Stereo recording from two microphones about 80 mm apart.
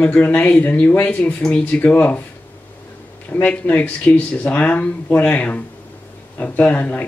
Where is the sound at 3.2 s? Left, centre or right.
Centre.